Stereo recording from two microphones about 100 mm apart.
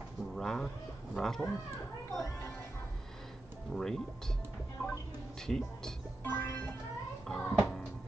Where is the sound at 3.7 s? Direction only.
5° left (ahead or behind).